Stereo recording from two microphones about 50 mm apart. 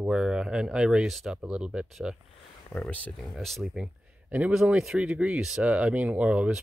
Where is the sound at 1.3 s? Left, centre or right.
Centre.